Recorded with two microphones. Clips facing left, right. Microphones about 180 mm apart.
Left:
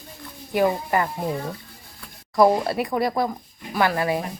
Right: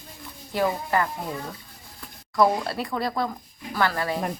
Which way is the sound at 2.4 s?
20° left (ahead or behind).